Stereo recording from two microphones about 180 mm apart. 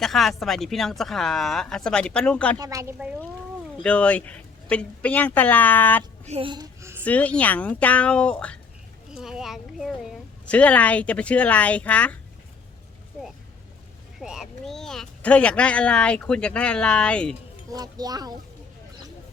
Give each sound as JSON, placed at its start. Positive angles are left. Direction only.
{"t": 0.0, "sound": "speech", "side_deg": 0}
{"t": 2.6, "sound": "speech", "side_deg": -20}
{"t": 3.8, "sound": "a woman's voice", "side_deg": 5}
{"t": 6.2, "sound": "a child's voice", "side_deg": -30}
{"t": 7.0, "sound": "a woman's voice", "side_deg": 10}
{"t": 14.2, "sound": "speech", "side_deg": 0}
{"t": 17.7, "sound": "speech", "side_deg": -20}